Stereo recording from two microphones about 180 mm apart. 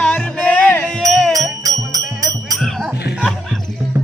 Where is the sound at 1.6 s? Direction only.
20° right (ahead or behind).